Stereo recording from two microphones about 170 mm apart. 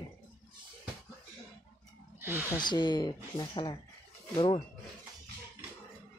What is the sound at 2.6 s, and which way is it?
Speech, 25° left (ahead or behind).